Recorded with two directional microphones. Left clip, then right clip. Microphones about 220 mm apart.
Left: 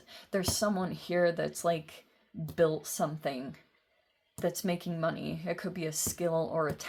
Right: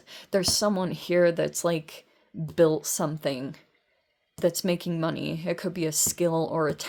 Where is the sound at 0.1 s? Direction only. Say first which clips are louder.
Right 8 dB; 50° right (ahead or behind).